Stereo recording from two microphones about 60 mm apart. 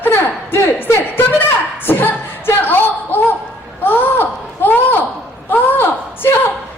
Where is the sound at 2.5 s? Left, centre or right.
Left.